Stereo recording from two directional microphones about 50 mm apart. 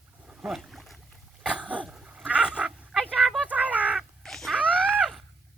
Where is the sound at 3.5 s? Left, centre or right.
Right.